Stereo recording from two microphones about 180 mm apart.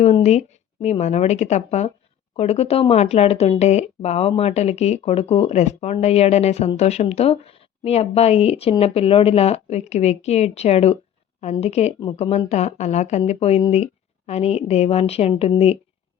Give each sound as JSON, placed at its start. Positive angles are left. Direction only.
{"t": 0.0, "sound": "speech", "side_deg": 40}